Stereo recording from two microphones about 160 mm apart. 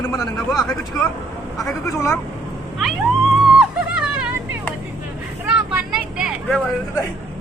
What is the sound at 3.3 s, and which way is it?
Music, 5° right (ahead or behind).